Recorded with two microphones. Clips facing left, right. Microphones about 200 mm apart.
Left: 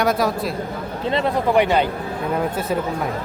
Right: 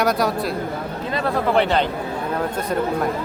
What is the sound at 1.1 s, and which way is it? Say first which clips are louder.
A man's voice: left 1 dB; 20° left (ahead or behind).